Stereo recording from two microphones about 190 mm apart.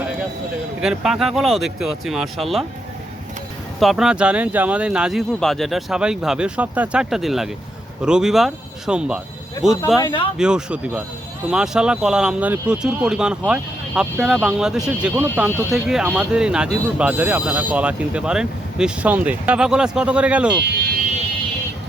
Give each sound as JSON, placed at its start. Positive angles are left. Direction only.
{"t": 0.8, "sound": "speech", "side_deg": -5}
{"t": 3.8, "sound": "speech", "side_deg": 0}
{"t": 10.0, "sound": "speech", "side_deg": 25}
{"t": 10.3, "sound": "speech", "side_deg": -5}